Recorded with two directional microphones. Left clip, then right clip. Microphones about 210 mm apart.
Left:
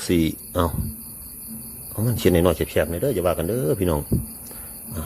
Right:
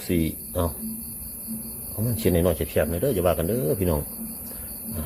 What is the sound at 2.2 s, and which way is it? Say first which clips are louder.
A man's voice: left 4 dB; 20° left (ahead or behind).